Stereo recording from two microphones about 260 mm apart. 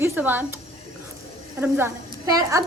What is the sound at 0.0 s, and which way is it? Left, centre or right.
Speech, centre.